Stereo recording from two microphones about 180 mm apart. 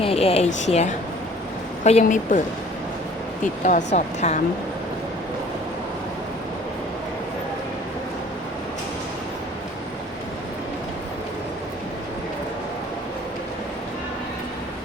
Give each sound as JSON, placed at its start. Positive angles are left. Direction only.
{"t": 0.0, "sound": "a woman's voice", "side_deg": 35}
{"t": 3.4, "sound": "a woman's voice", "side_deg": 45}